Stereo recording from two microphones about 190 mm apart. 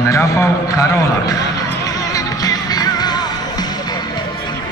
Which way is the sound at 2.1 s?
20° left (ahead or behind).